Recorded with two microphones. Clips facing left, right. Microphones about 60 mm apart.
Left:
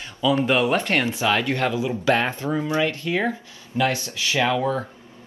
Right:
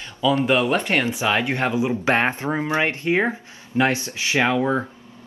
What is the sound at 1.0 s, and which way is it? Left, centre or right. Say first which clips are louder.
Speech: even; right.